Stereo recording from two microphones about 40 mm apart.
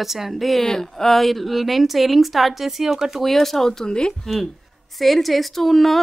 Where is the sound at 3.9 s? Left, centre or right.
Left.